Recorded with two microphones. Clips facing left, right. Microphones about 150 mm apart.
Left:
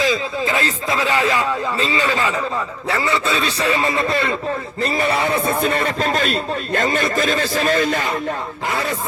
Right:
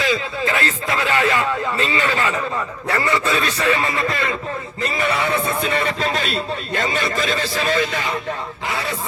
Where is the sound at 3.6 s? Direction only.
30° left (ahead or behind).